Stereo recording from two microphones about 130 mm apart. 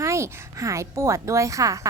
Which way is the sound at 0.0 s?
20° right (ahead or behind).